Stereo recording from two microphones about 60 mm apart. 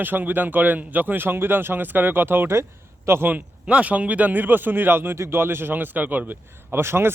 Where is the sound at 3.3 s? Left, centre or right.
Right.